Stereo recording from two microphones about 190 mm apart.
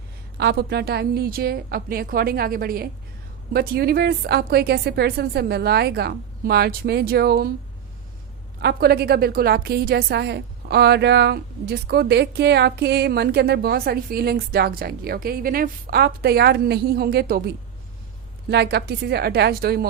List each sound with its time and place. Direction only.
0.3 s a woman's voice: 60° right (ahead or behind)
8.6 s a woman's voice: 55° right (ahead or behind)
18.5 s a woman's voice: 60° right (ahead or behind)